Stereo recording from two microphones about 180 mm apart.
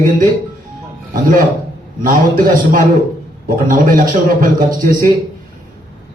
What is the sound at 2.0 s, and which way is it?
A man's voice, 50° right (ahead or behind).